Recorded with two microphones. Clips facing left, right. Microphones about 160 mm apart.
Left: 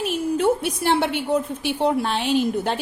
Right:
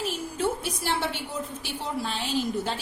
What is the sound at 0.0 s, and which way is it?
A woman's voice, 65° left (ahead or behind).